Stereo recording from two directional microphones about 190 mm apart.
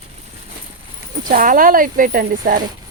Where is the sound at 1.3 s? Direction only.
45° right (ahead or behind).